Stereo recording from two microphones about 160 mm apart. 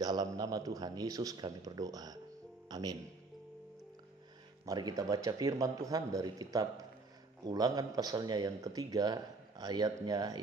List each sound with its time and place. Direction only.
0.0 s speech: 25° right (ahead or behind)
4.6 s speech: 25° right (ahead or behind)